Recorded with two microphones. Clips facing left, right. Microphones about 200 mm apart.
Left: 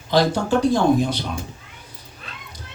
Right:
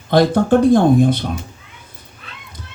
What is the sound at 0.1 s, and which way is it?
Speech, 55° right (ahead or behind).